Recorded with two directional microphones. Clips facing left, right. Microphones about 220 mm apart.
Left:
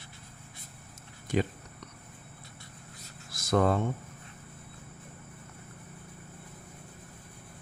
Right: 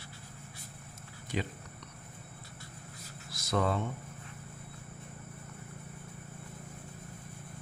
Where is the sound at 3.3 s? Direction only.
50° left (ahead or behind).